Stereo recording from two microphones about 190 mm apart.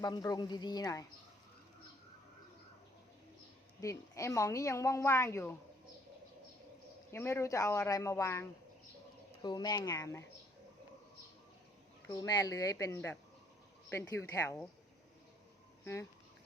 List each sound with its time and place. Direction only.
0.0 s a woman's voice: 20° left (ahead or behind)
3.8 s a woman's voice: 15° left (ahead or behind)
7.1 s a woman's voice: 15° left (ahead or behind)
12.0 s a woman's voice: 15° left (ahead or behind)
15.8 s speech: 15° left (ahead or behind)